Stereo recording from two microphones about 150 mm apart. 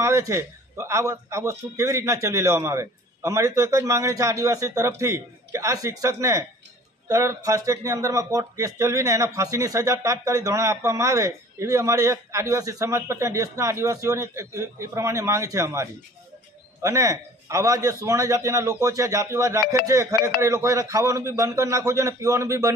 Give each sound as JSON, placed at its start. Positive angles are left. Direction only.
{"t": 0.0, "sound": "speech", "side_deg": -20}